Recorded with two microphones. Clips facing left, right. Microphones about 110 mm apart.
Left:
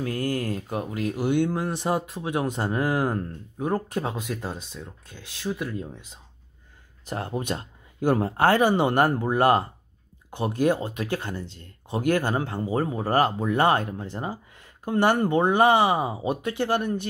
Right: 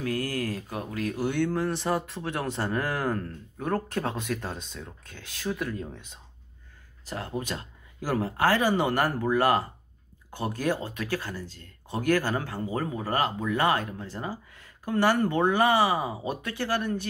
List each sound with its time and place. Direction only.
0.0 s speech: 25° left (ahead or behind); by 5.9 s 5° left (ahead or behind)
7.1 s speech: 25° left (ahead or behind)